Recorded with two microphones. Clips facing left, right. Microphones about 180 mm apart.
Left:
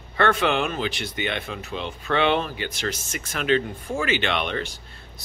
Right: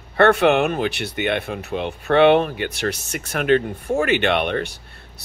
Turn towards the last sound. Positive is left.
turn(degrees=-55)  # may be behind; listen again after turning